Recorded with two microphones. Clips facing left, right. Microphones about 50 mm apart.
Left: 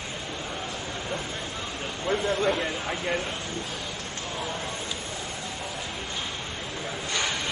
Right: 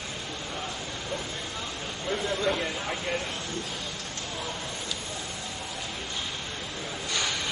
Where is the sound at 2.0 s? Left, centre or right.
Left.